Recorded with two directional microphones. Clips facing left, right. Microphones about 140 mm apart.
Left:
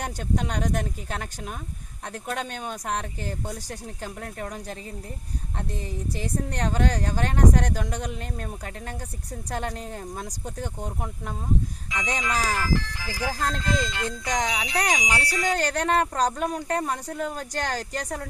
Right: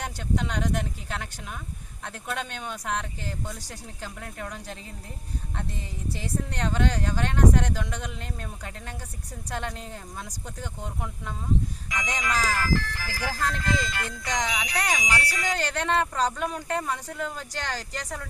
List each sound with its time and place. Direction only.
0.0 s speech: 45° left (ahead or behind)
9.5 s speech: 45° left (ahead or behind)
11.9 s speech: 25° left (ahead or behind)
14.8 s speech: 20° left (ahead or behind)
15.4 s speech: 45° left (ahead or behind)